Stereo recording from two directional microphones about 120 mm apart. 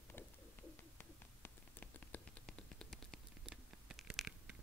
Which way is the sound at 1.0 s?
15° left (ahead or behind).